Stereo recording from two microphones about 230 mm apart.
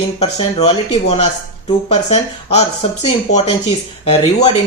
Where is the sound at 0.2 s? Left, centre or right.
Left.